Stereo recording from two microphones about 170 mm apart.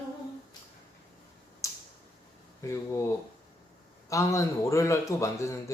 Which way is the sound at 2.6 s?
15° left (ahead or behind).